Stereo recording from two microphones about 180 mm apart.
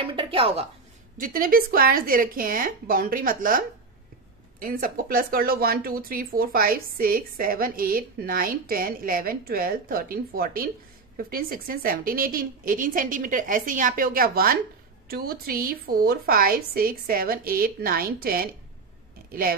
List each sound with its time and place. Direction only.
0.0 s speech: 30° right (ahead or behind)
1.2 s a woman's voice: 50° right (ahead or behind)